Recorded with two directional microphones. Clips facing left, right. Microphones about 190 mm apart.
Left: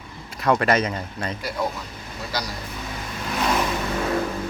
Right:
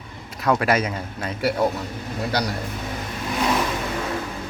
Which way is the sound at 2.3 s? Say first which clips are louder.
Right 5 dB; 65° right (ahead or behind).